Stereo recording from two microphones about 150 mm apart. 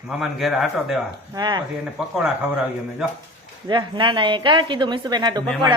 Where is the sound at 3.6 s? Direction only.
30° right (ahead or behind).